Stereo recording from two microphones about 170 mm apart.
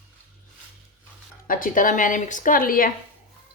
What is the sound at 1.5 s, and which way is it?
A woman's voice, 55° left (ahead or behind).